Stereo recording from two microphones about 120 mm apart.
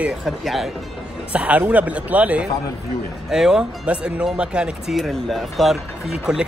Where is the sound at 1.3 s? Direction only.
10° right (ahead or behind).